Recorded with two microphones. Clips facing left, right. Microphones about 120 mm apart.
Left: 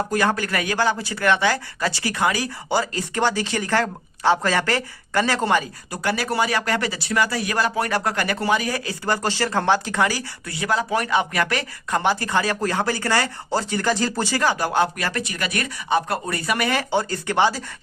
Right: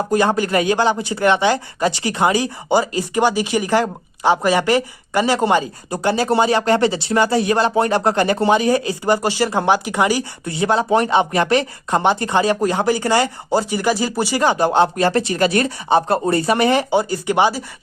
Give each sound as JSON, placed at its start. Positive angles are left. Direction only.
{"t": 0.1, "sound": "speech", "side_deg": -20}
{"t": 16.9, "sound": "speech", "side_deg": -15}